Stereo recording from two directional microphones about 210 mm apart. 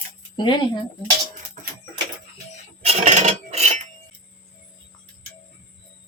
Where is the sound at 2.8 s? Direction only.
35° right (ahead or behind).